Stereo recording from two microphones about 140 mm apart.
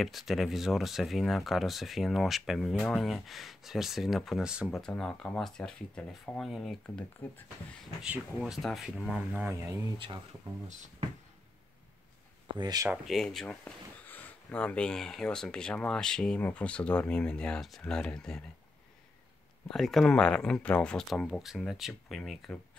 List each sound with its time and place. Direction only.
0.0 s speech: centre (ahead or behind); by 9.8 s 15° right (ahead or behind)
12.5 s speech: 25° right (ahead or behind)
12.9 s speech: centre (ahead or behind)
19.7 s speech: centre (ahead or behind)